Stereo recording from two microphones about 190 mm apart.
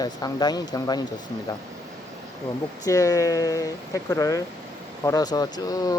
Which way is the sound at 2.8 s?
15° left (ahead or behind).